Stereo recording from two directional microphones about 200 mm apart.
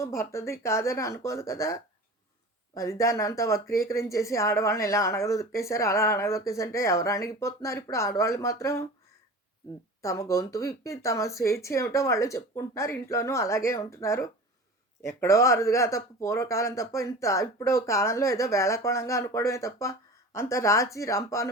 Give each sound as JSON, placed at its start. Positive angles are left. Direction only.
{"t": 0.0, "sound": "speech", "side_deg": 15}
{"t": 10.0, "sound": "speech", "side_deg": 15}